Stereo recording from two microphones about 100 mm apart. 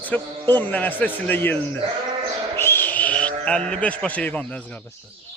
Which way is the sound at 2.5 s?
20° left (ahead or behind).